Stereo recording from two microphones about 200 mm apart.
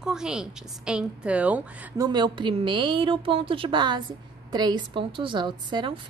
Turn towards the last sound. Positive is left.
turn(degrees=-20)  # may be behind; listen again after turning